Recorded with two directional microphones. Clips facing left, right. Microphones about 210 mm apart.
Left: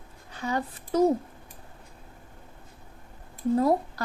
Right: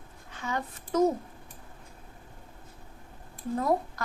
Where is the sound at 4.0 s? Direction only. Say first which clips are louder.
Left 3 dB; 35° left (ahead or behind).